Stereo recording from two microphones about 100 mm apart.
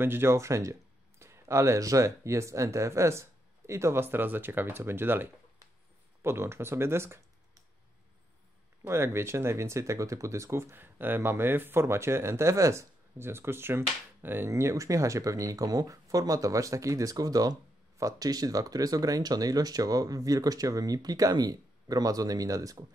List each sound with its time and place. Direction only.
0.0 s speech: 25° right (ahead or behind)
8.8 s speech: 25° right (ahead or behind)